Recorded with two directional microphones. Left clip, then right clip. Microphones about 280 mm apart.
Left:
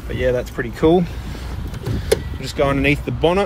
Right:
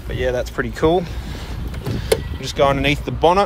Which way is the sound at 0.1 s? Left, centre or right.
Right.